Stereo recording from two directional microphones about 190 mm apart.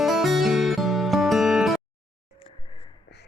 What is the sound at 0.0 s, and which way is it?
Music, centre (ahead or behind).